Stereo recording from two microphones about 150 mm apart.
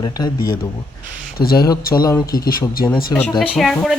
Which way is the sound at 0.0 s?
25° left (ahead or behind).